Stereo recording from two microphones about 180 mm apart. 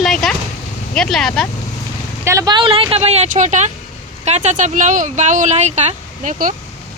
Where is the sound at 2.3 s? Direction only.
20° right (ahead or behind); by 6.5 s 45° right (ahead or behind).